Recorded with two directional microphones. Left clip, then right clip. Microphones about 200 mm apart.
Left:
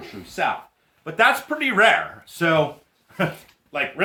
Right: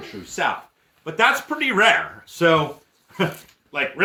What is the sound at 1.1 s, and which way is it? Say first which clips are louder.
Speech: even; 20° left (ahead or behind).